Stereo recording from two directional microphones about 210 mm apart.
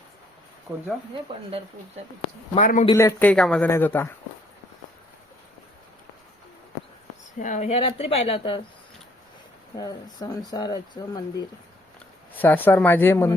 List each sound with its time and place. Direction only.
2.6 s a man's voice: 35° left (ahead or behind)
2.8 s speech: 15° left (ahead or behind)
7.3 s speech: 35° left (ahead or behind)
9.7 s speech: 20° left (ahead or behind)